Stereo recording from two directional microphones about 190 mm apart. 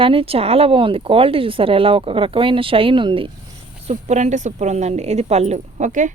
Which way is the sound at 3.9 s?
35° right (ahead or behind).